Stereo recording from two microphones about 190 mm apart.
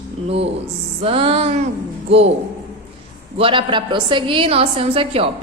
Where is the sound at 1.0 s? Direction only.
30° right (ahead or behind).